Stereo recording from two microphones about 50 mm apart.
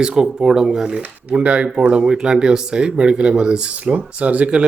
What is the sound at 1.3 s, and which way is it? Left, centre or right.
Speech, right.